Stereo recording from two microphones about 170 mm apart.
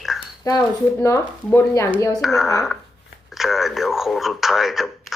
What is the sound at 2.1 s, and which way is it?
Speech, centre (ahead or behind).